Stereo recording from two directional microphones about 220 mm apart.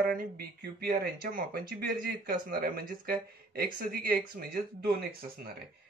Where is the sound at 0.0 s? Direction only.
40° right (ahead or behind).